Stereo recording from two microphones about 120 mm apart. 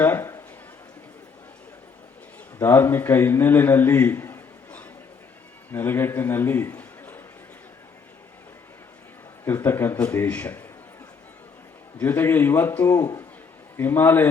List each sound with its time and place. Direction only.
0.0 s a sound: 20° left (ahead or behind)
2.6 s a man's voice: 20° left (ahead or behind)
9.4 s a man's voice: 20° left (ahead or behind)
11.9 s a man's voice: 20° left (ahead or behind)